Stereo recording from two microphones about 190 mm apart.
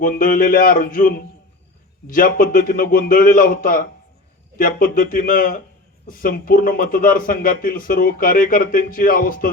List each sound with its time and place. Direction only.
0.0 s speech: 45° left (ahead or behind)